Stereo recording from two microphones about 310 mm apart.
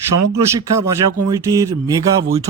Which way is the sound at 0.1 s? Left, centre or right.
Right.